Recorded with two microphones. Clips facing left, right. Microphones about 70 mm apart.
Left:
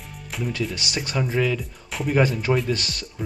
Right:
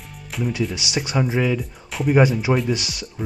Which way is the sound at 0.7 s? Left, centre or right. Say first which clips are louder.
Right 3 dB; centre.